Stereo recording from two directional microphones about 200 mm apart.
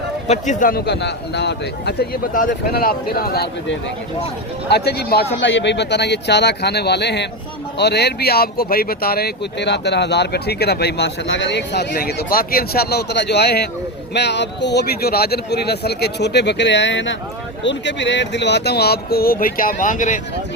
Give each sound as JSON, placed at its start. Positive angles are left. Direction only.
{"t": 0.3, "sound": "a man's voice", "side_deg": 40}